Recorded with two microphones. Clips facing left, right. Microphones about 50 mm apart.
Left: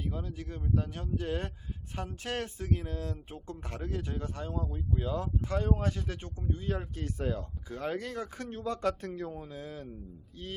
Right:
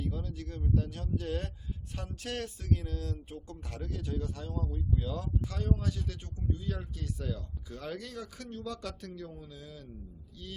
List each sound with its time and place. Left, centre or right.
0.0 s speech: left